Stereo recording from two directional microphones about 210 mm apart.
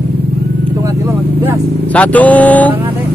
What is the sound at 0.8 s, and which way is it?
Vehicle, 10° right (ahead or behind).